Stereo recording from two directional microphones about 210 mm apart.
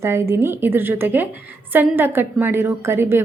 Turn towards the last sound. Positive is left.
turn(degrees=-10)  # may be behind; listen again after turning